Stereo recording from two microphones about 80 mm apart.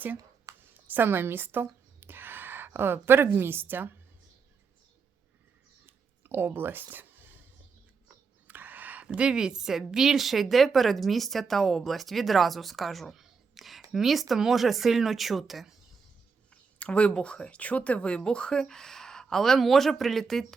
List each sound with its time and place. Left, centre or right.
0.7 s a woman's voice: right
2.0 s a sound: right
3.3 s a woman's voice: right
5.8 s a sound: right
9.0 s a woman's voice: centre
16.8 s speech: centre